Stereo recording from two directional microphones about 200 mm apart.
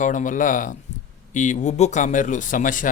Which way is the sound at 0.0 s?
40° left (ahead or behind).